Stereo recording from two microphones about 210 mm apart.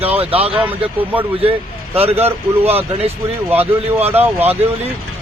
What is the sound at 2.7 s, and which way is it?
Speech, 30° right (ahead or behind).